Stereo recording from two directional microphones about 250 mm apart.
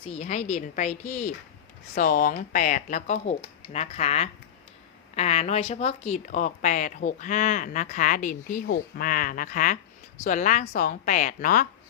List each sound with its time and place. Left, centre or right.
0.0 s a woman's voice: left
2.0 s speech: left